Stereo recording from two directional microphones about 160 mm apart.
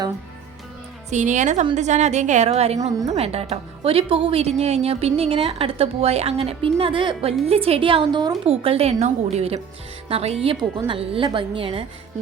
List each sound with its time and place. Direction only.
1.1 s a woman's voice: 50° right (ahead or behind); by 8.4 s 25° right (ahead or behind)
8.4 s a woman's voice: 40° right (ahead or behind)